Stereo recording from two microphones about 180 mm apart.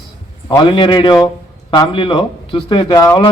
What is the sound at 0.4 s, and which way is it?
A man's voice, 25° left (ahead or behind).